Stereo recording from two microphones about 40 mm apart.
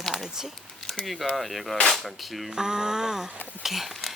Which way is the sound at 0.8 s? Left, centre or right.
Centre.